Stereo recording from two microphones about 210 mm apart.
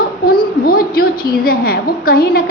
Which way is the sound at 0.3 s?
45° left (ahead or behind).